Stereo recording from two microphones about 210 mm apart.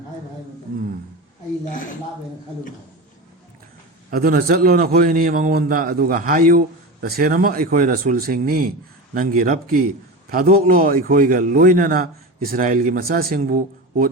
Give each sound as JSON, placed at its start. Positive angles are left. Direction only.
{"t": 4.1, "sound": "a man's voice", "side_deg": -45}